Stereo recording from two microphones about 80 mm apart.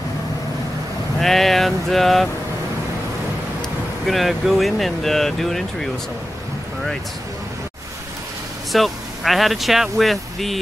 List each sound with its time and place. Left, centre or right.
1.2 s a sound: centre
4.0 s speech: centre
8.7 s speech: centre